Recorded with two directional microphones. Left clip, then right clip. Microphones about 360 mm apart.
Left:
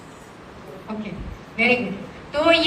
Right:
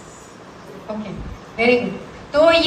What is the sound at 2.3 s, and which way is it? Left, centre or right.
Speech, right.